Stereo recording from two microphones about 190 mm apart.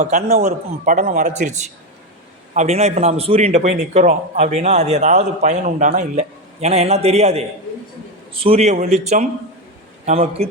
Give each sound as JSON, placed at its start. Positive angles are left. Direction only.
{"t": 0.0, "sound": "a man's voice", "side_deg": -35}